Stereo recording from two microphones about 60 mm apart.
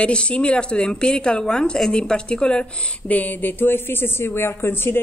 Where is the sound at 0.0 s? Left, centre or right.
Centre.